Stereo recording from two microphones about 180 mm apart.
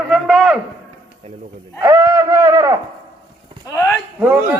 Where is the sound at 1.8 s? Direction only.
15° right (ahead or behind).